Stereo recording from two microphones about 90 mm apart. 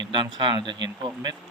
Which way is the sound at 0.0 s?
60° right (ahead or behind).